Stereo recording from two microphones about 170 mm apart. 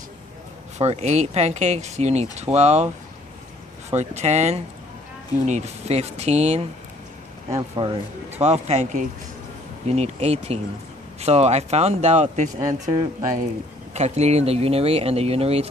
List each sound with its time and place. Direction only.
0.7 s speech: 40° right (ahead or behind)
3.9 s speech: 40° right (ahead or behind)
7.5 s speech: 25° right (ahead or behind); by 12.4 s 40° right (ahead or behind)
12.5 s speech: 20° right (ahead or behind)
13.9 s speech: 40° right (ahead or behind)